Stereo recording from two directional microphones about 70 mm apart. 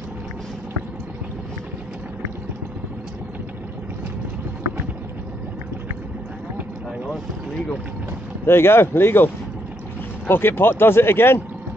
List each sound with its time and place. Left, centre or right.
8.5 s speech: left